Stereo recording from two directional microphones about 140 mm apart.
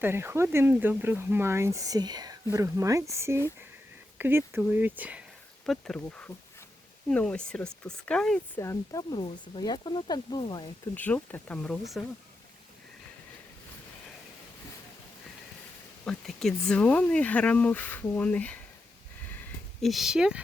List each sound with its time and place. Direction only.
0.0 s speech: 15° right (ahead or behind)
5.6 s speech: 5° left (ahead or behind)
8.6 s speech: 25° left (ahead or behind)
10.9 s speech: 10° left (ahead or behind)
16.0 s speech: centre (ahead or behind)
19.8 s speech: centre (ahead or behind)